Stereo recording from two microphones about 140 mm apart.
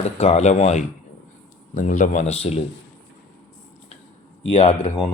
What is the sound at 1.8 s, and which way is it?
Speech, 65° left (ahead or behind).